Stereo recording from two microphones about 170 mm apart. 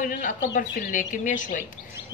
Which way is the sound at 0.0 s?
50° left (ahead or behind).